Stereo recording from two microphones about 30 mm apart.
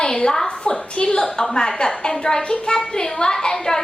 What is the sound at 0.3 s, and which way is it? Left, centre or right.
A woman's voice, left.